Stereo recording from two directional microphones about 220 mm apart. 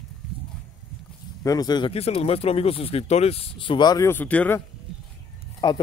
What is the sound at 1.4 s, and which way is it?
Speech, 15° left (ahead or behind).